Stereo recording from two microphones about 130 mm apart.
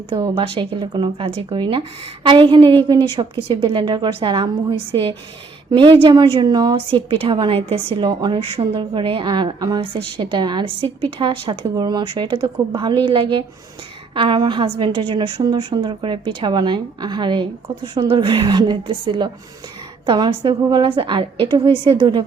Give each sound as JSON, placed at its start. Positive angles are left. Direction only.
{"t": 0.1, "sound": "a woman's voice", "side_deg": -40}